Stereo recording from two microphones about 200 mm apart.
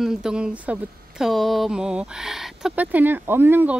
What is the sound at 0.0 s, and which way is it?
Speech, 5° right (ahead or behind).